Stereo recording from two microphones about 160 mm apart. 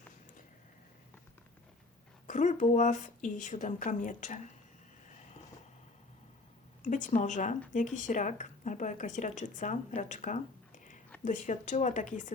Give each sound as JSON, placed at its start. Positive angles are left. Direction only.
{"t": 2.2, "sound": "speech", "side_deg": 50}
{"t": 6.8, "sound": "speech", "side_deg": 50}